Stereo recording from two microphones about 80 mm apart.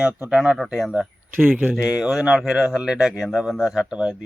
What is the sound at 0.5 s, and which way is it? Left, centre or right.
Speech, centre.